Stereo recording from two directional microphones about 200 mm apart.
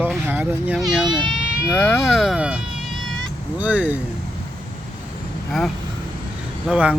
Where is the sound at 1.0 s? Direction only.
20° right (ahead or behind).